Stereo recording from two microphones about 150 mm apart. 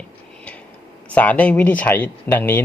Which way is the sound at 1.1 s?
10° left (ahead or behind).